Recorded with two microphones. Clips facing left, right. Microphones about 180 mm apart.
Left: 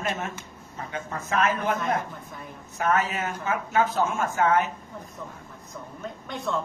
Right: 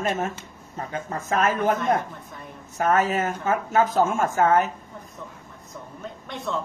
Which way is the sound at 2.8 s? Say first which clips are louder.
Right 4 dB; 40° right (ahead or behind).